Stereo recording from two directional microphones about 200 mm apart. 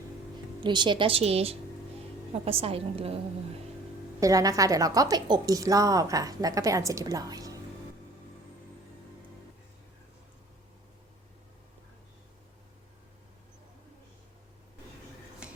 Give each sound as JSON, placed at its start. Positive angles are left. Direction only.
{"t": 0.6, "sound": "a woman's voice", "side_deg": -25}
{"t": 4.2, "sound": "a woman's voice", "side_deg": -15}
{"t": 15.4, "sound": "a sound", "side_deg": -5}